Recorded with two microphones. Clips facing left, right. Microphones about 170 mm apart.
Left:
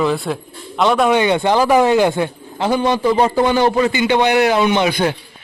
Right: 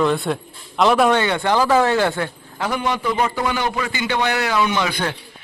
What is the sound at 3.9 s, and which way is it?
Speech, 20° left (ahead or behind).